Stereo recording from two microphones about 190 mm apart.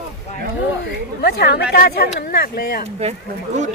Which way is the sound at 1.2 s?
60° left (ahead or behind).